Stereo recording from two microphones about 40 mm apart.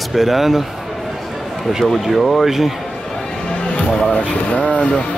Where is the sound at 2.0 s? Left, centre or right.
Centre.